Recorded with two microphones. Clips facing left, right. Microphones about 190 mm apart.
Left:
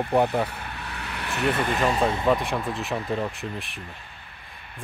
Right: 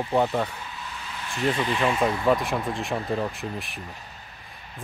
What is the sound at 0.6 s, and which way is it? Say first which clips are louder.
Vehicle: left 2 dB; 65° left (ahead or behind).